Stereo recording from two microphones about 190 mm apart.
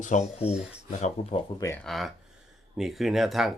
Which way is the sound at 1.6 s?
15° left (ahead or behind).